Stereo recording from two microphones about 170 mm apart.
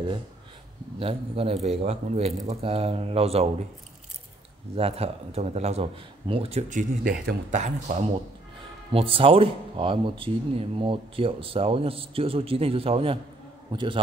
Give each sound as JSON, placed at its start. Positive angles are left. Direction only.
{"t": 0.9, "sound": "speech", "side_deg": -35}
{"t": 4.7, "sound": "speech", "side_deg": -35}
{"t": 8.9, "sound": "a man's voice", "side_deg": -35}